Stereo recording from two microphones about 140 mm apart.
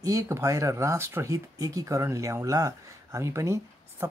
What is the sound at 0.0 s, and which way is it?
Speech, 20° right (ahead or behind).